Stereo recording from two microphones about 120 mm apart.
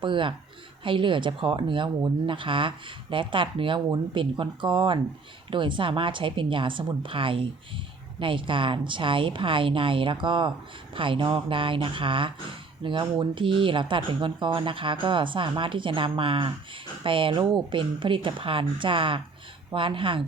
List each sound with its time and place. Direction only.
0.0 s speech: 45° right (ahead or behind)